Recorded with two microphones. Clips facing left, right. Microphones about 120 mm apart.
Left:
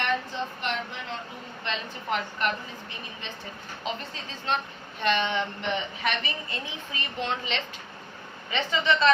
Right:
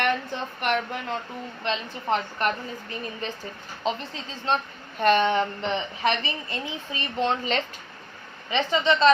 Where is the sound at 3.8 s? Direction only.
35° right (ahead or behind).